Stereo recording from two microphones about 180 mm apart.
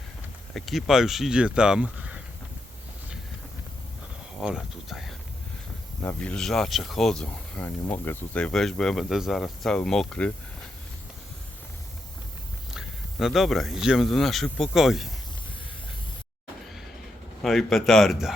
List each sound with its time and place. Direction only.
0.5 s speech: centre (ahead or behind)
4.4 s speech: centre (ahead or behind)
12.7 s speech: centre (ahead or behind)
17.4 s speech: centre (ahead or behind)